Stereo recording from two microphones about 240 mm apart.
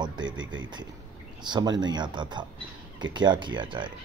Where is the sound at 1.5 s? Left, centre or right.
Centre.